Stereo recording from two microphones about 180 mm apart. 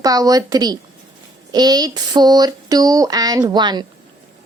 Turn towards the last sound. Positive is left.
turn(degrees=-25)  # may be behind; listen again after turning